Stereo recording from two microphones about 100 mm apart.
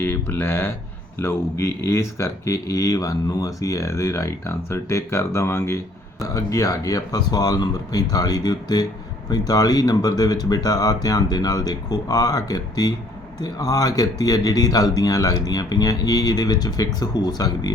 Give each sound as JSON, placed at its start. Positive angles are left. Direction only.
{"t": 0.0, "sound": "speech", "side_deg": 20}